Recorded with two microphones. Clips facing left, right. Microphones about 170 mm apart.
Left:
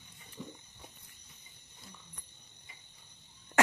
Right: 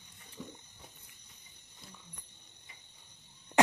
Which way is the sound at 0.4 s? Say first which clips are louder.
Left 1 dB; 5° left (ahead or behind).